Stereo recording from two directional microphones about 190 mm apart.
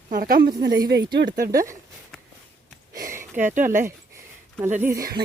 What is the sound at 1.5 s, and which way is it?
Speech, 15° right (ahead or behind).